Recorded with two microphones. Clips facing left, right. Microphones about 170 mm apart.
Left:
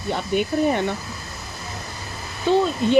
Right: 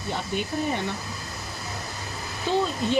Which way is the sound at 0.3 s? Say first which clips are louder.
Left 8 dB; 60° left (ahead or behind).